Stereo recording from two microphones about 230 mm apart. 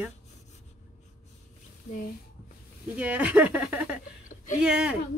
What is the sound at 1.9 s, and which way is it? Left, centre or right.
Speech, left.